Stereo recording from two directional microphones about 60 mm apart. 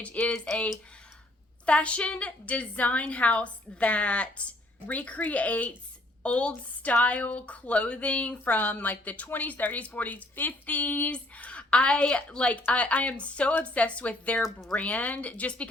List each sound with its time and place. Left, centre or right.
0.0 s speech: centre
1.6 s speech: centre